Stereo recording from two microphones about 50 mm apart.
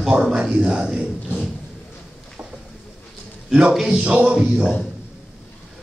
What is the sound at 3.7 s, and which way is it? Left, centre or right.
Speech, centre.